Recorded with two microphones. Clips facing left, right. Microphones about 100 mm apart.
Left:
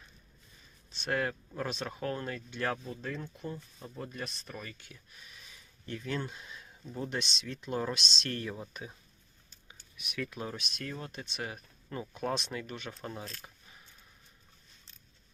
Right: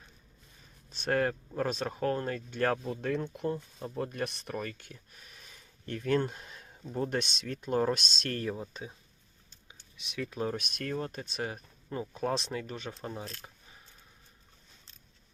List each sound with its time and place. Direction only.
0.9 s speech: 45° right (ahead or behind)
2.8 s speech: 65° right (ahead or behind); by 8.9 s 30° right (ahead or behind)
9.6 s a sound: 25° right (ahead or behind)
10.6 s speech: 55° right (ahead or behind); by 11.6 s 40° right (ahead or behind)
11.9 s speech: 25° right (ahead or behind)
12.9 s speech: 20° right (ahead or behind)